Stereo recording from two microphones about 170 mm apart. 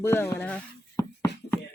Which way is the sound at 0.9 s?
20° left (ahead or behind).